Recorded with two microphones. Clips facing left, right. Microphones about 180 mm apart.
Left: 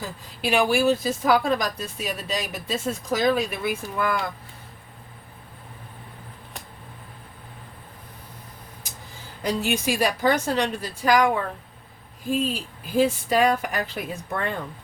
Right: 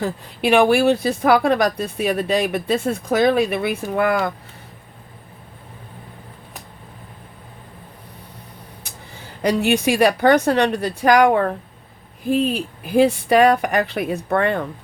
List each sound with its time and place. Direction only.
0.0 s speech: 60° right (ahead or behind)
9.4 s speech: 70° right (ahead or behind)